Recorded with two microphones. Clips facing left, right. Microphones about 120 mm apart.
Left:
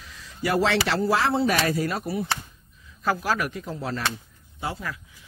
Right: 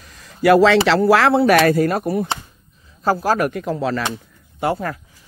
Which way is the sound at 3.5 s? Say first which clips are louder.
Right 9 dB; 70° right (ahead or behind).